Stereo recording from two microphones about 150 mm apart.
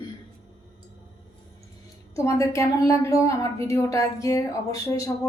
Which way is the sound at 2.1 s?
20° left (ahead or behind).